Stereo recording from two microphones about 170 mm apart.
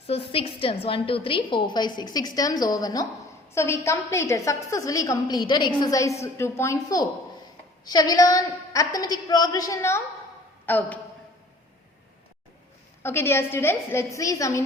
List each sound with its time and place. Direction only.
0.1 s a woman's voice: 30° left (ahead or behind); by 11.0 s 10° left (ahead or behind)
13.0 s a woman's voice: 15° left (ahead or behind)